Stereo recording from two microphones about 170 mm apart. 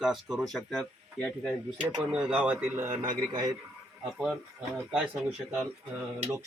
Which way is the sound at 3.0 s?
25° right (ahead or behind).